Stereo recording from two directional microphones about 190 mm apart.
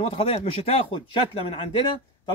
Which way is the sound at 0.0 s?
30° left (ahead or behind).